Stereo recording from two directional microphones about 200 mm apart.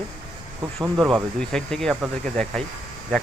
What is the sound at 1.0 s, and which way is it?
Speech, centre (ahead or behind).